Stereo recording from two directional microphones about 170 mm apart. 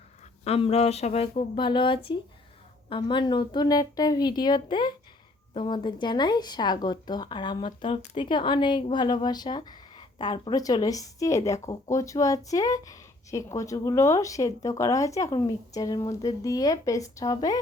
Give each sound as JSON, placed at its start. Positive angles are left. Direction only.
{"t": 0.4, "sound": "speech", "side_deg": 35}